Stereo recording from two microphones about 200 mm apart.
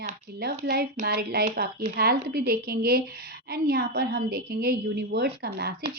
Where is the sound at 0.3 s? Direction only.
50° right (ahead or behind).